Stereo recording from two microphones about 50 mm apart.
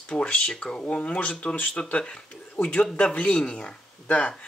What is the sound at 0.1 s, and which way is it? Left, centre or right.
Speech, left.